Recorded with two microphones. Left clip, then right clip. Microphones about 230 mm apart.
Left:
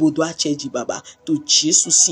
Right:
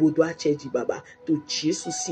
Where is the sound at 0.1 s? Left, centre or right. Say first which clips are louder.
Left 2 dB; left.